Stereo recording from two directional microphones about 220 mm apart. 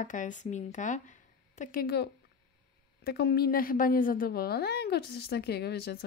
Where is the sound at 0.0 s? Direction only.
35° left (ahead or behind).